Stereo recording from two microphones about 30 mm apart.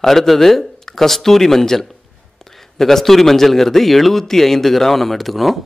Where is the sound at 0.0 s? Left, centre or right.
Centre.